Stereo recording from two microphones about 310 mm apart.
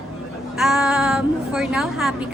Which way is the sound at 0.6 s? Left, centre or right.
Centre.